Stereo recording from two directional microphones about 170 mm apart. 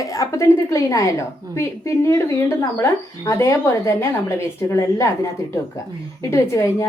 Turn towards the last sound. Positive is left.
turn(degrees=15)  # may be behind; listen again after turning